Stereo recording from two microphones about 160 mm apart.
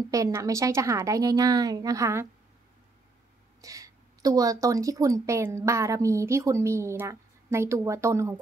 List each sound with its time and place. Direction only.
0.1 s a woman's voice: 20° right (ahead or behind)
3.6 s a woman's voice: 20° right (ahead or behind)